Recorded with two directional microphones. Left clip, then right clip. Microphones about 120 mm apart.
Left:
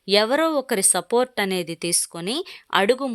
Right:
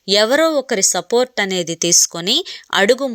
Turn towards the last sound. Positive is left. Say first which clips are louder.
# right 5 dB
turn(degrees=-20)  # may be behind; listen again after turning